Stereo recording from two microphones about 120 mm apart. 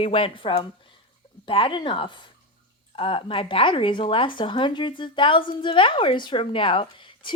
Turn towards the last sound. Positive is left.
turn(degrees=45)  # may be behind; listen again after turning